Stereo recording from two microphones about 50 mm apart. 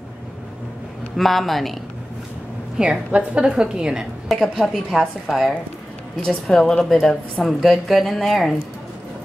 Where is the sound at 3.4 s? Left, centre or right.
Centre.